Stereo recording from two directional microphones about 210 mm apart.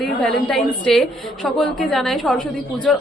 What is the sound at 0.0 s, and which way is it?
A woman's voice, centre (ahead or behind).